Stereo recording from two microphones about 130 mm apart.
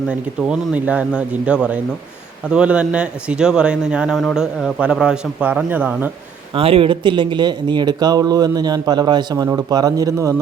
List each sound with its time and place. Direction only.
0.1 s speech: 10° right (ahead or behind)
6.5 s speech: 45° right (ahead or behind); by 10.3 s 25° right (ahead or behind)